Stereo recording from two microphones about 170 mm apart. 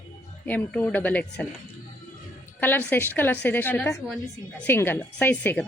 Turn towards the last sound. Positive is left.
turn(degrees=10)  # may be behind; listen again after turning